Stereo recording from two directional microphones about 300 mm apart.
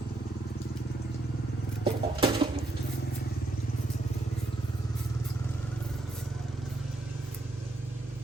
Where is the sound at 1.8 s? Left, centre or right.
Centre.